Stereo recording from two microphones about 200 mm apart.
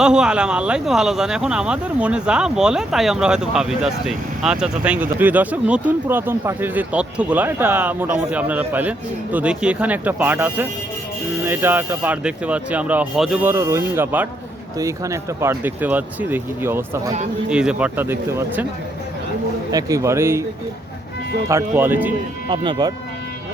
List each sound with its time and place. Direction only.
0.0 s speech: 5° right (ahead or behind)
19.7 s speech: 15° right (ahead or behind)
21.4 s speech: 15° right (ahead or behind)
22.4 s speech: 25° right (ahead or behind)